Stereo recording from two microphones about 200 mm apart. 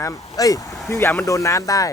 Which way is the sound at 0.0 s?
15° left (ahead or behind).